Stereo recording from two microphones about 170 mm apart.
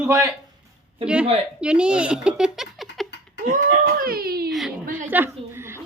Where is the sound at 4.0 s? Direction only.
60° right (ahead or behind).